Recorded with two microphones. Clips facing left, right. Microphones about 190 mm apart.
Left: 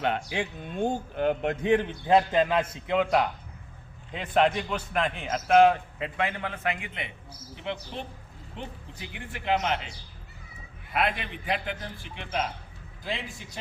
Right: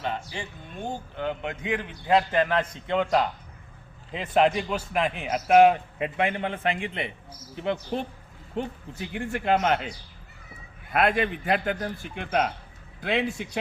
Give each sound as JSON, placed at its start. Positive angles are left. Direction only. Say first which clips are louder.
{"t": 0.0, "sound": "speech", "louder": "left 4 dB", "side_deg": 65}
{"t": 1.6, "sound": "a man's voice", "louder": "left 6 dB", "side_deg": 30}
{"t": 7.5, "sound": "a man's voice", "louder": "right 7 dB", "side_deg": -45}
{"t": 10.9, "sound": "a man's voice", "louder": "right 6 dB", "side_deg": -50}
{"t": 13.0, "sound": "a man's voice", "louder": "right 9 dB", "side_deg": -65}